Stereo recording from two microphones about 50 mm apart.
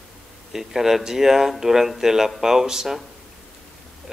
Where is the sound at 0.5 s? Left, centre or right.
Centre.